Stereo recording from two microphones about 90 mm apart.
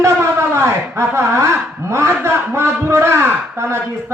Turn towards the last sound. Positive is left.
turn(degrees=-30)  # may be behind; listen again after turning